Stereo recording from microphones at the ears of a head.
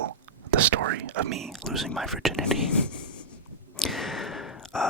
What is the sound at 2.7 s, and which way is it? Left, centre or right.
Whispering, left.